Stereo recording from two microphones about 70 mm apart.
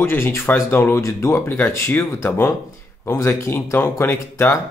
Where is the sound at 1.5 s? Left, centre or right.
Left.